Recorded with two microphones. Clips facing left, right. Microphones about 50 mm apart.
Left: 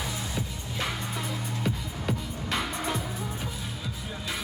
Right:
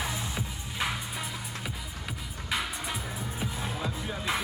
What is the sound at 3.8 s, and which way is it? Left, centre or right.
Music, right.